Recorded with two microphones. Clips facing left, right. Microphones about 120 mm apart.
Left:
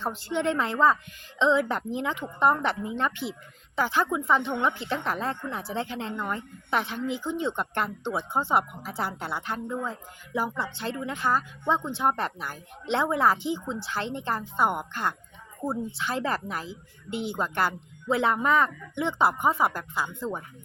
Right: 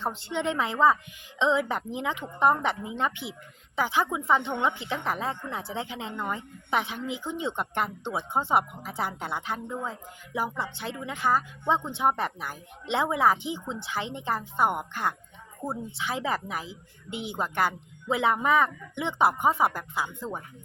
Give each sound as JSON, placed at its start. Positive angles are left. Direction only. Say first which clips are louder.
{"t": 0.0, "sound": "speech", "louder": "left 2 dB", "side_deg": -25}
{"t": 10.6, "sound": "a woman's voice", "louder": "left 2 dB", "side_deg": -10}
{"t": 11.7, "sound": "speech", "louder": "even", "side_deg": -20}
{"t": 15.6, "sound": "a woman's voice", "louder": "left 3 dB", "side_deg": 0}
{"t": 16.0, "sound": "a woman's voice", "louder": "left 1 dB", "side_deg": -15}